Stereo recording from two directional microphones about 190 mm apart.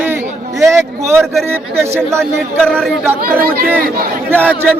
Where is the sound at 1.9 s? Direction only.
15° right (ahead or behind).